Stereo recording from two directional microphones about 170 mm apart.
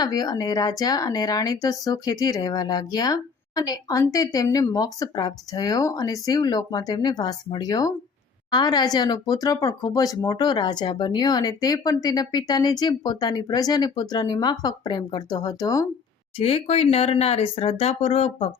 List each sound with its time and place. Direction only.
0.0 s speech: 25° left (ahead or behind)
16.4 s speech: 35° left (ahead or behind)